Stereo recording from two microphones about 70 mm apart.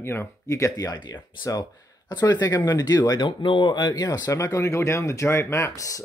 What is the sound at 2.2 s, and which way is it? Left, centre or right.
Speech, left.